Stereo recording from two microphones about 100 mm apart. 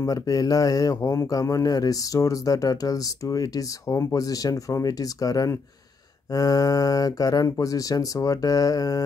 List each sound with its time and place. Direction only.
0.0 s speech: 35° left (ahead or behind)